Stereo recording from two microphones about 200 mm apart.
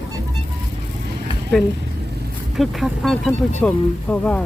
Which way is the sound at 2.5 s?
Centre (ahead or behind).